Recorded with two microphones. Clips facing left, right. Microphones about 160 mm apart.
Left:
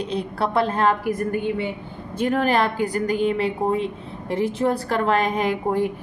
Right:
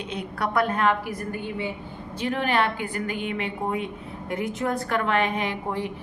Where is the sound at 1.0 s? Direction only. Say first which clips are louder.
Left 8 dB; 50° left (ahead or behind).